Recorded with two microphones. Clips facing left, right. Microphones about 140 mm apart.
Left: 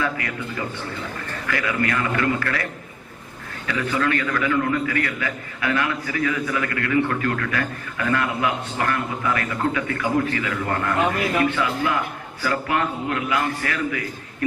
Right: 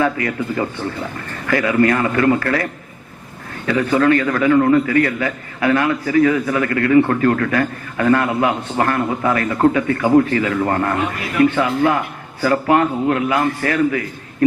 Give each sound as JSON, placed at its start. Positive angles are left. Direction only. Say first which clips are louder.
{"t": 0.0, "sound": "a man's voice", "louder": "right 7 dB", "side_deg": -40}
{"t": 3.7, "sound": "a man's voice", "louder": "right 8 dB", "side_deg": -40}